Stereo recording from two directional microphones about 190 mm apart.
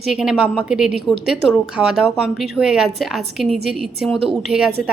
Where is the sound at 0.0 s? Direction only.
Centre (ahead or behind).